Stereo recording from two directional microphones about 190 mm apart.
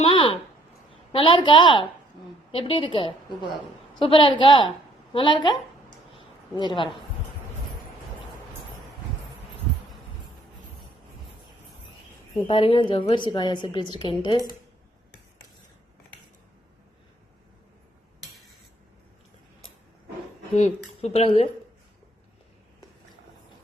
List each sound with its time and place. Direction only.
0.0 s a sound: 25° left (ahead or behind)
1.1 s a woman's voice: 30° left (ahead or behind)
6.6 s a woman's voice: 25° left (ahead or behind)
12.5 s a woman's voice: 30° left (ahead or behind)
20.6 s speech: 30° left (ahead or behind)